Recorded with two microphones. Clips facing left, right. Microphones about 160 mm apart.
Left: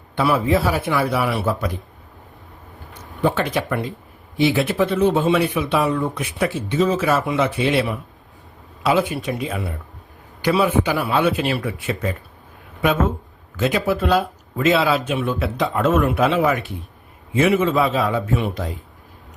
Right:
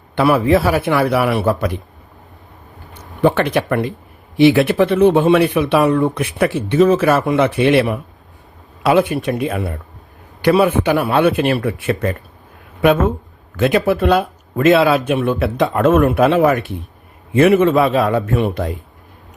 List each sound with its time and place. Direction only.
0.2 s speech: 65° right (ahead or behind)
3.2 s speech: 65° right (ahead or behind)
13.6 s speech: 60° right (ahead or behind)